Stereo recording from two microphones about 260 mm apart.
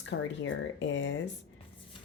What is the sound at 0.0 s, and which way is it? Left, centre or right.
Speech, left.